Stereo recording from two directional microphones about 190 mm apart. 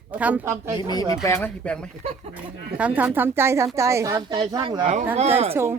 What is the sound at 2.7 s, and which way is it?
A woman's voice, 5° right (ahead or behind).